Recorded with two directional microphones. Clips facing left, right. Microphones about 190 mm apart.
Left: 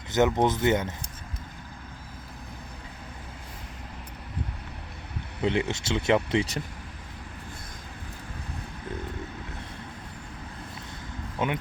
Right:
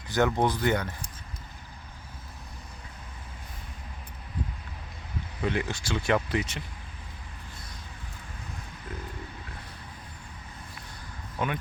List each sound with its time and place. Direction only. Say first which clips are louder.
0.1 s speech: left 2 dB; 20° left (ahead or behind)
5.4 s speech: left 4 dB; 25° left (ahead or behind)
11.3 s speech: left 2 dB; 20° left (ahead or behind)